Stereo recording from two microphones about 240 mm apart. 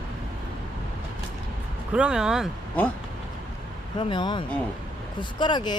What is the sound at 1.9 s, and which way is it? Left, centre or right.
Speech, centre.